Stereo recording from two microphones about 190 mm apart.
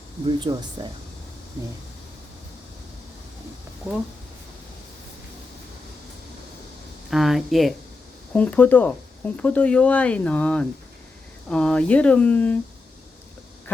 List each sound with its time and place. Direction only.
0.3 s speech: 25° right (ahead or behind)
7.1 s speech: centre (ahead or behind)